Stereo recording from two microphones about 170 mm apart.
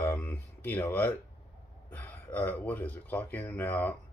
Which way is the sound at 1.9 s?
10° left (ahead or behind).